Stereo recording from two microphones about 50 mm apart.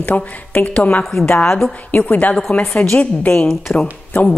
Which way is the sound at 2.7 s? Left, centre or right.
Centre.